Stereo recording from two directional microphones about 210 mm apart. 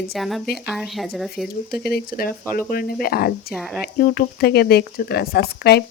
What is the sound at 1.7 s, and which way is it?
Speech, 50° left (ahead or behind).